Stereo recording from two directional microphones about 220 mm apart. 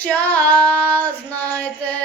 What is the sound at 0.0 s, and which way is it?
Female singing, 5° left (ahead or behind).